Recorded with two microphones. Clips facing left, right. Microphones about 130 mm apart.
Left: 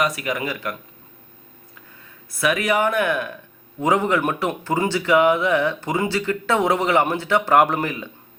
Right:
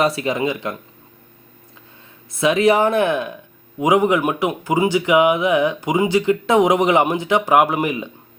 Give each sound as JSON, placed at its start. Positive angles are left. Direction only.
{"t": 0.0, "sound": "speech", "side_deg": -25}
{"t": 2.4, "sound": "a man's voice", "side_deg": -25}